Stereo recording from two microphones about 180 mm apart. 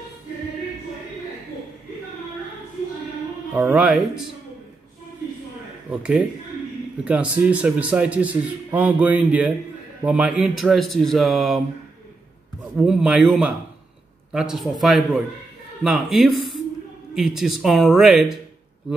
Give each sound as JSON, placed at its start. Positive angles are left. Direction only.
{"t": 3.5, "sound": "a man's voice", "side_deg": -10}
{"t": 5.9, "sound": "a man's voice", "side_deg": -5}
{"t": 12.7, "sound": "speech", "side_deg": -5}